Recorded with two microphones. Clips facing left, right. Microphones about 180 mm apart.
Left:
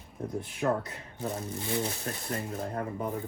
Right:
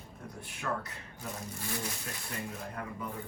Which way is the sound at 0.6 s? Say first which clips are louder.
Left 8 dB; 30° left (ahead or behind).